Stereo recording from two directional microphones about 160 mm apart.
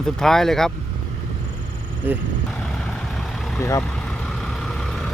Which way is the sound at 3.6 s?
15° left (ahead or behind).